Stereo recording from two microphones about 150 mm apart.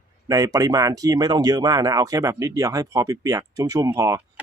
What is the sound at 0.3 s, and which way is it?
Speech, 25° right (ahead or behind).